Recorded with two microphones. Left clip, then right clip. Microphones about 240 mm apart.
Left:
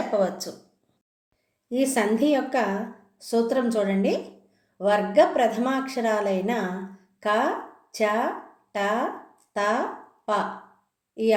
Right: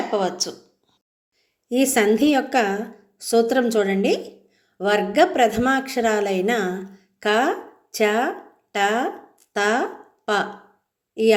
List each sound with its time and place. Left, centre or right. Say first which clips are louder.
0.1 s speech: even; centre
1.7 s speech: right 5 dB; right
8.7 s a sound: right 4 dB; right
11.1 s a woman's voice: right 5 dB; right